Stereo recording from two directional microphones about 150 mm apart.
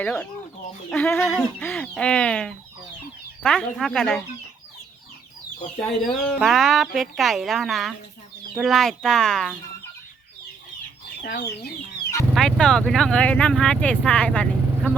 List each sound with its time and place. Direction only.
0.0 s speech: 5° left (ahead or behind)
6.2 s speech: centre (ahead or behind)
11.2 s speech: 90° left
12.3 s speech: 5° left (ahead or behind)